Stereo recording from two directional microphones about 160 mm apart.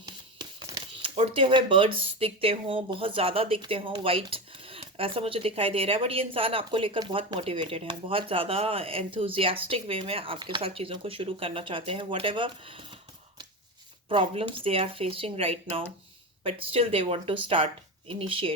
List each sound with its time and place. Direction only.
0.0 s speech: 25° right (ahead or behind)
14.1 s speech: 35° right (ahead or behind)